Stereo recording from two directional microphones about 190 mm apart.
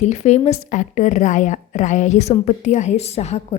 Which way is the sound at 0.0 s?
35° left (ahead or behind).